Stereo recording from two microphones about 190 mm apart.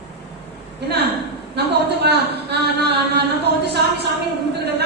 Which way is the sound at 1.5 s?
60° right (ahead or behind).